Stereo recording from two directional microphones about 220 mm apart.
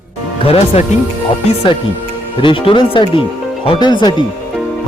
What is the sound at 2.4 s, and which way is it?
A man's voice, 25° left (ahead or behind).